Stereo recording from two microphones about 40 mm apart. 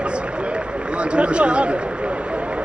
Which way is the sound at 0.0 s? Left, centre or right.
Right.